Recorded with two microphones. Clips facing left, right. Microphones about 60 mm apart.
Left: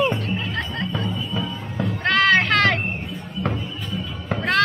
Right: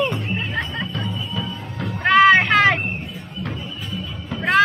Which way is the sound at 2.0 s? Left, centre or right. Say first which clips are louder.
Right 5 dB; centre.